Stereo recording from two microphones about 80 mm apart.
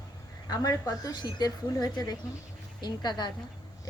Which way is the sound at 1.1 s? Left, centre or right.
Left.